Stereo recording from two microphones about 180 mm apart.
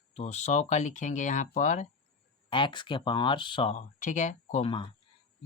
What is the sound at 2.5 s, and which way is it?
Speech, 25° left (ahead or behind).